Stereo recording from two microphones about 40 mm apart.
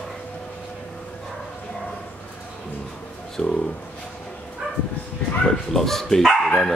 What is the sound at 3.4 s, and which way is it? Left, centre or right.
Speech, centre.